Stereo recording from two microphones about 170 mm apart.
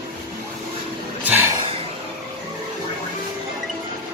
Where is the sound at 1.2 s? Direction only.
10° right (ahead or behind).